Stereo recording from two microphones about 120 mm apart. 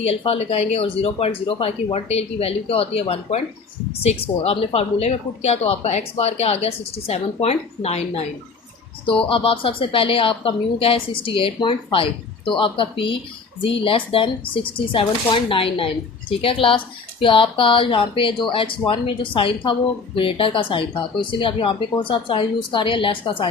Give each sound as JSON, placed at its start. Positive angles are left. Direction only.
{"t": 0.0, "sound": "a woman's voice", "side_deg": 60}
{"t": 1.9, "sound": "a woman's voice", "side_deg": 60}
{"t": 9.3, "sound": "speech", "side_deg": 50}